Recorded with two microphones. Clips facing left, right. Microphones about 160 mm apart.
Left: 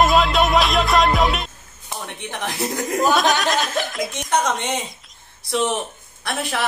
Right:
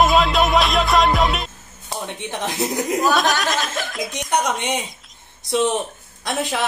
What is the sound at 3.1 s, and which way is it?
Speech, centre (ahead or behind).